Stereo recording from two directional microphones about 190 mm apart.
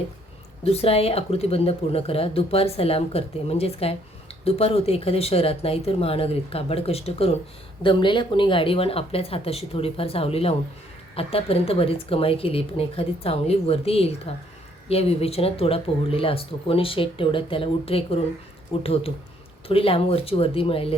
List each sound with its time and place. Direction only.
0.6 s speech: 30° left (ahead or behind)